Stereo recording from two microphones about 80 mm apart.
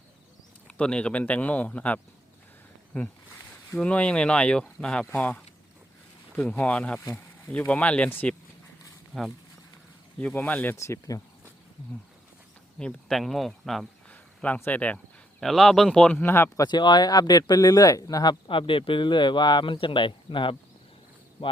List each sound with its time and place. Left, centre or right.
0.8 s speech: centre
6.6 s speech: centre
7.0 s insect: left
7.7 s speech: centre
9.1 s speech: centre
10.2 s speech: centre
10.8 s speech: left
12.8 s speech: centre
14.1 s a sound: centre
15.4 s speech: centre
16.1 s speech: left
16.6 s speech: left